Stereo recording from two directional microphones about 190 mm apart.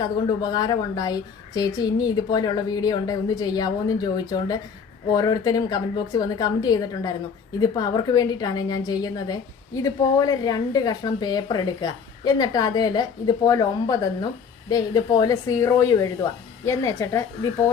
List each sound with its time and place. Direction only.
0.5 s a woman's voice: 20° left (ahead or behind)